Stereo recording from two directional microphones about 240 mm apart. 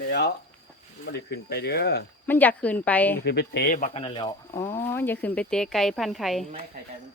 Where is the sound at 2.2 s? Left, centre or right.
Centre.